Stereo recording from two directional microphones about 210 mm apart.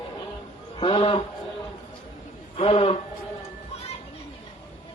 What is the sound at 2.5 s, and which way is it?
Speech, 25° left (ahead or behind).